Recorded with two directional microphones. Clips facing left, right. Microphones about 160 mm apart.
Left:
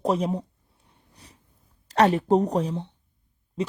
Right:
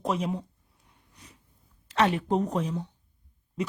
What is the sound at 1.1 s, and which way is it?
Dog, 35° left (ahead or behind).